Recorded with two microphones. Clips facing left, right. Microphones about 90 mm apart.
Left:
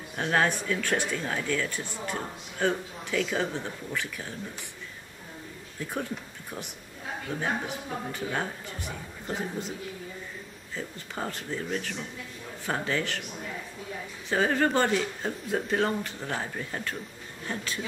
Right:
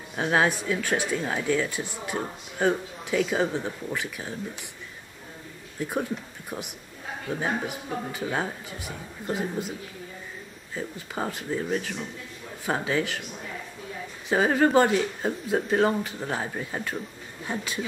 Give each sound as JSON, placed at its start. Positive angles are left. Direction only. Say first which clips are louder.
{"t": 0.1, "sound": "speech", "louder": "right 2 dB", "side_deg": -10}
{"t": 5.8, "sound": "speech", "louder": "right 5 dB", "side_deg": -15}
{"t": 7.2, "sound": "speech", "louder": "right 3 dB", "side_deg": -10}
{"t": 10.7, "sound": "speech", "louder": "right 4 dB", "side_deg": -10}
{"t": 14.3, "sound": "speech", "louder": "right 4 dB", "side_deg": -10}